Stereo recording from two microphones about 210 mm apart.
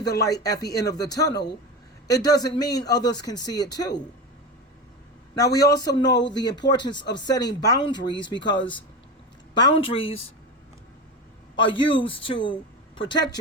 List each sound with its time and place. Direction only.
0.0 s speech: 15° left (ahead or behind)
5.3 s a man's voice: 15° left (ahead or behind)
6.1 s speech: 55° left (ahead or behind)
6.4 s speech: 20° left (ahead or behind)
11.5 s speech: 25° left (ahead or behind)